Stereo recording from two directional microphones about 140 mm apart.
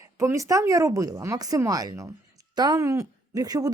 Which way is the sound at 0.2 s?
20° right (ahead or behind).